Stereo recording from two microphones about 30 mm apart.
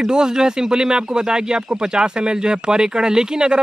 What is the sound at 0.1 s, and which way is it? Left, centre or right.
Speech, right.